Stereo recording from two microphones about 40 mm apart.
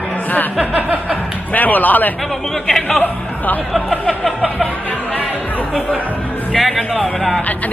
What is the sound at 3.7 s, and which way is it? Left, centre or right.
Speech, centre.